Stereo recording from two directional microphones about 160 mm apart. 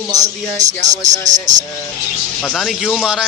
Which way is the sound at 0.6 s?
50° right (ahead or behind).